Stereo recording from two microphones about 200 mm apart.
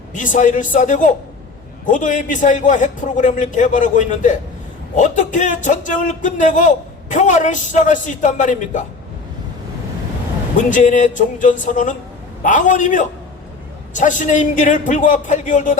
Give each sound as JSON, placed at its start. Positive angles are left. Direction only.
{"t": 0.1, "sound": "speech", "side_deg": 40}
{"t": 10.6, "sound": "speech", "side_deg": 40}